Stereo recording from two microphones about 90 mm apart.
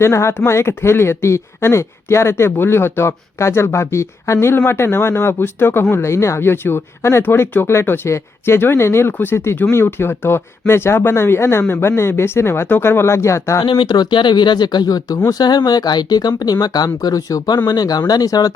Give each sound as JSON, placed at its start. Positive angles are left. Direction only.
{"t": 0.0, "sound": "speech", "side_deg": 30}
{"t": 13.6, "sound": "speech", "side_deg": 60}